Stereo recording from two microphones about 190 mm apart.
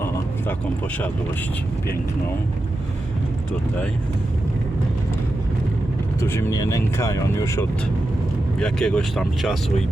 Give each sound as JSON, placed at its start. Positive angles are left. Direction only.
{"t": 6.1, "sound": "speech", "side_deg": 15}
{"t": 8.5, "sound": "speech", "side_deg": 5}